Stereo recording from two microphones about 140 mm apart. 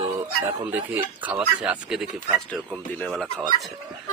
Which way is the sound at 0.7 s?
15° right (ahead or behind).